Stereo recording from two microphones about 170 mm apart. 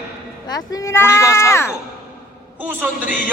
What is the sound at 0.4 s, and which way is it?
Speech, 20° left (ahead or behind).